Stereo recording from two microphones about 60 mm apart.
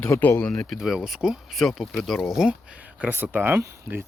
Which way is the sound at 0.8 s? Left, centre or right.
Centre.